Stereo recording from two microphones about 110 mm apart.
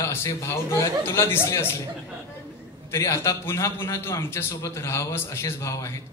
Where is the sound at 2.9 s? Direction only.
25° left (ahead or behind).